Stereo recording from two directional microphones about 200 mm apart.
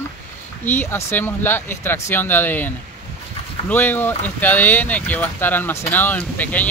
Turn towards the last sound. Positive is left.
turn(degrees=10)  # may be behind; listen again after turning